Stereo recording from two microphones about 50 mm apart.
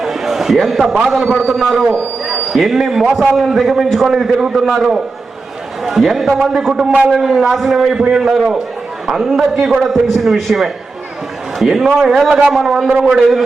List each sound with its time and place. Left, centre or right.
0.0 s a man's voice: centre
6.8 s a man's voice: right
7.1 s a man's voice: centre